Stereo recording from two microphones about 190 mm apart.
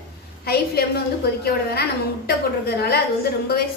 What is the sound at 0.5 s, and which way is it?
A woman's voice, 55° left (ahead or behind).